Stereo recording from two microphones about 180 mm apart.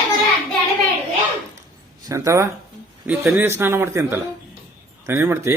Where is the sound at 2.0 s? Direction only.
20° right (ahead or behind).